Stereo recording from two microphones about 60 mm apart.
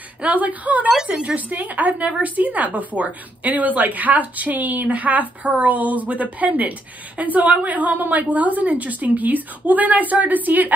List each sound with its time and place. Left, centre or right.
0.2 s a woman's voice: right